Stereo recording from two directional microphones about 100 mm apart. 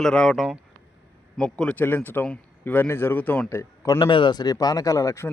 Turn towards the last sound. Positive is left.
turn(degrees=30)  # may be behind; listen again after turning